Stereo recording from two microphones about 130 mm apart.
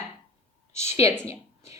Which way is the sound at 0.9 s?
20° right (ahead or behind).